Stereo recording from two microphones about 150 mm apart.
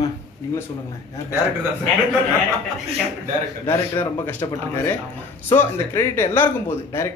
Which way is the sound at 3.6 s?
15° left (ahead or behind).